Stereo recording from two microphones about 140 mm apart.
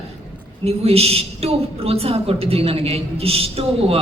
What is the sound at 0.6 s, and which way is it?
A woman's voice, 45° right (ahead or behind).